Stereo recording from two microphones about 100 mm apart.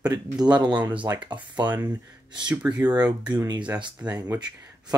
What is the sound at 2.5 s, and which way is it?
Speech, 15° right (ahead or behind).